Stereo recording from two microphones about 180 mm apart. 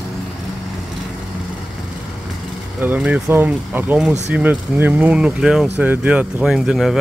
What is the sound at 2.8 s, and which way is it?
Speech, 10° right (ahead or behind).